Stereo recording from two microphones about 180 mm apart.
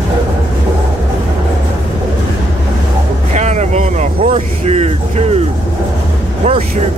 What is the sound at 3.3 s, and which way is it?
Vehicle, 40° right (ahead or behind).